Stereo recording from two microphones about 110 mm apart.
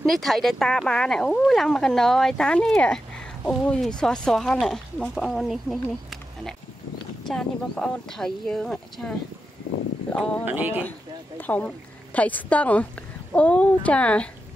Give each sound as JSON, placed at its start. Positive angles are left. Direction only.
{"t": 0.0, "sound": "speech", "side_deg": 0}
{"t": 10.4, "sound": "speech", "side_deg": -15}
{"t": 10.9, "sound": "speech", "side_deg": 15}